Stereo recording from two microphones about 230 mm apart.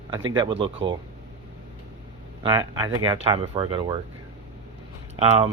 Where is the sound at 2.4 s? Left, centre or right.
Centre.